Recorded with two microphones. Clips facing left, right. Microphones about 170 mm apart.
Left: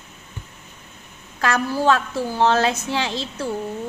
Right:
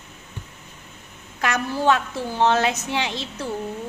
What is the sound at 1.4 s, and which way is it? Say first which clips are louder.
A woman's voice: left 2 dB; 20° right (ahead or behind).